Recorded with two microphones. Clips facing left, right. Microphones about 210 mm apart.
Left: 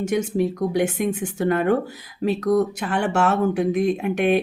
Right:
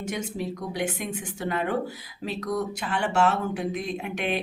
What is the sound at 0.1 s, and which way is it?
Speech, 55° left (ahead or behind).